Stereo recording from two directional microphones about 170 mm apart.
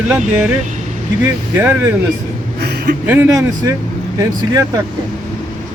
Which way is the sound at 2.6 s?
70° right (ahead or behind).